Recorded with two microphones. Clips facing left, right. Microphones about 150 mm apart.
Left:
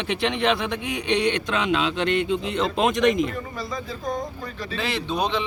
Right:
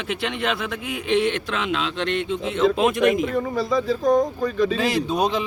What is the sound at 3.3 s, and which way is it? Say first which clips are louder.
A man's voice: right 9 dB; 90° right.